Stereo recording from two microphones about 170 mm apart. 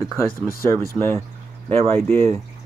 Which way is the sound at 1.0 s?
35° right (ahead or behind).